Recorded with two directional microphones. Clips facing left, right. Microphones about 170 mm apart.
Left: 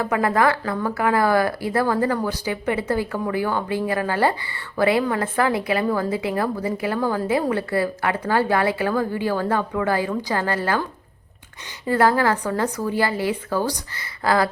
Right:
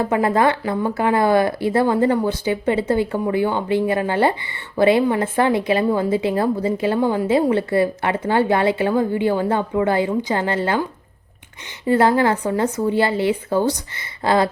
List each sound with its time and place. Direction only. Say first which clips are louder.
0.0 s speech: right 2 dB; 25° right (ahead or behind)
11.9 s speech: right 3 dB; 20° right (ahead or behind)